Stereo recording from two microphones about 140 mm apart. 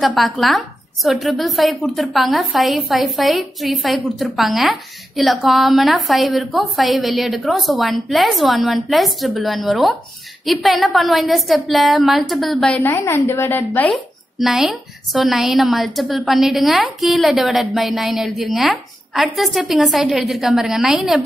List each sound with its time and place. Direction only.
0.0 s a woman's voice: centre (ahead or behind)
12.8 s a woman's voice: 15° left (ahead or behind)
13.9 s a woman's voice: centre (ahead or behind)